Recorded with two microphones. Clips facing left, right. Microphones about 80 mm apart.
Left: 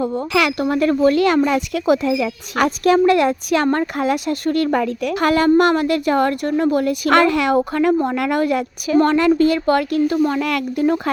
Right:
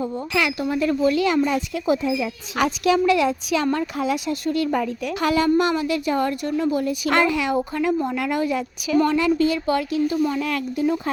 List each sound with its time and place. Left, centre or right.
0.0 s speech: left
0.3 s a woman's voice: left
2.6 s a woman's voice: left